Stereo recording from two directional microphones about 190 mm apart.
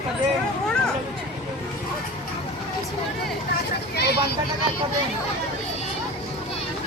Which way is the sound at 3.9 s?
60° left (ahead or behind).